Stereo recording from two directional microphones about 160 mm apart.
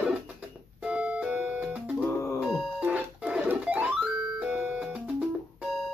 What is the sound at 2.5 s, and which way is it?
Music, centre (ahead or behind).